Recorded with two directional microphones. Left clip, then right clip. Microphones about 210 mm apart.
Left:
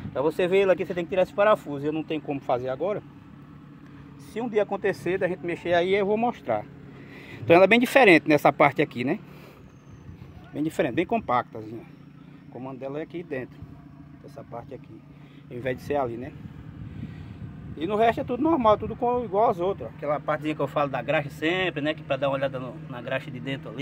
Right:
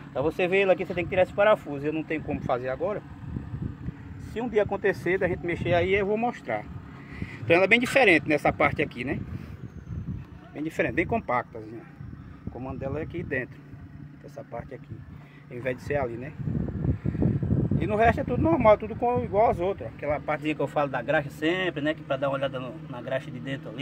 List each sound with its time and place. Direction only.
0.1 s speech: 20° left (ahead or behind)
4.4 s speech: 10° left (ahead or behind); by 9.2 s 35° left (ahead or behind)
10.8 s speech: 15° left (ahead or behind)
12.5 s speech: 5° left (ahead or behind)
15.5 s speech: 20° left (ahead or behind)
17.8 s speech: 15° left (ahead or behind)